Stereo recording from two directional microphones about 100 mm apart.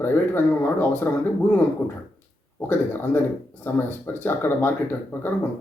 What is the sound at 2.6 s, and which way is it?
Speech, 20° left (ahead or behind).